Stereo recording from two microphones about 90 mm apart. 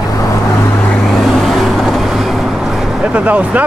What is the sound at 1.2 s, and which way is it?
Vehicle, centre (ahead or behind).